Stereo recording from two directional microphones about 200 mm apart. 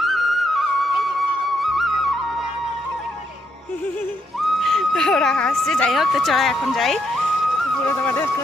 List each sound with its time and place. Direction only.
0.0 s music: centre (ahead or behind)
4.4 s a sound: centre (ahead or behind)
7.9 s speech: 10° left (ahead or behind)